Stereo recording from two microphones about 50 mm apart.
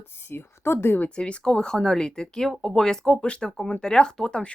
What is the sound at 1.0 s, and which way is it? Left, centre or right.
Speech, left.